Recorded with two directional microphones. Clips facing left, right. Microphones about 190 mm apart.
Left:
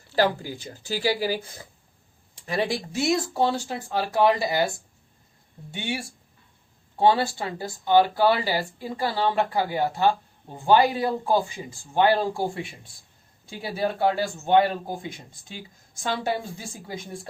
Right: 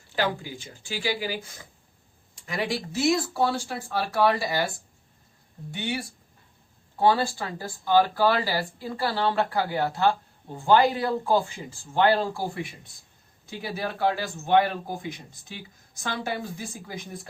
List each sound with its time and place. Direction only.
0.2 s speech: 40° left (ahead or behind)
2.5 s a man's voice: 25° left (ahead or behind)
5.7 s a man's voice: 25° left (ahead or behind)
13.4 s a man's voice: 25° left (ahead or behind)